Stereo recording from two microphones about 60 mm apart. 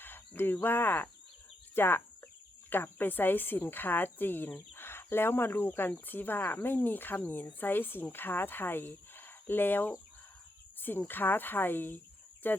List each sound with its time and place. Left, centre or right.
0.0 s speech: left
10.8 s cricket: left
11.1 s speech: left